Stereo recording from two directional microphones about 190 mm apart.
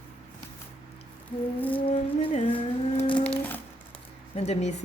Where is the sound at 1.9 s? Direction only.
30° left (ahead or behind).